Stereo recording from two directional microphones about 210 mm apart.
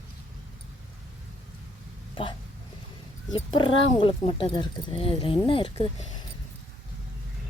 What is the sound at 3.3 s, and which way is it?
Speech, 25° left (ahead or behind).